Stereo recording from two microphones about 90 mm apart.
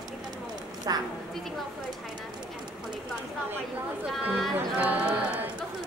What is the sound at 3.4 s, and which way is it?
Speech, 25° right (ahead or behind).